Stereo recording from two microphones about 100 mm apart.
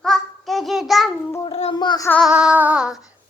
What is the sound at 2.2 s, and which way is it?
Child singing, 5° right (ahead or behind).